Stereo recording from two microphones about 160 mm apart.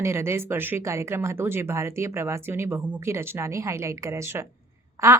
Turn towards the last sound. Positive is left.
turn(degrees=-15)  # may be behind; listen again after turning